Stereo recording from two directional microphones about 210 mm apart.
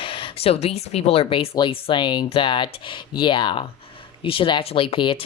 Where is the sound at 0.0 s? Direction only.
25° left (ahead or behind).